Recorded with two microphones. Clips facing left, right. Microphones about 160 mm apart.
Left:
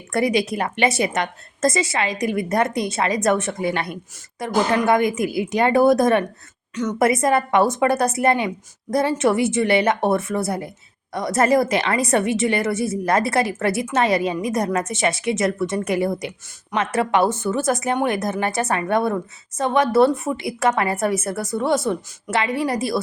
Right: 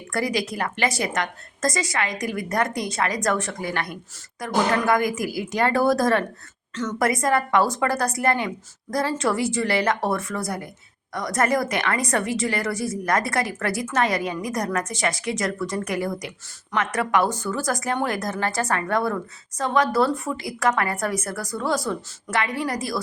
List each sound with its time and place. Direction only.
0.1 s speech: 25° left (ahead or behind)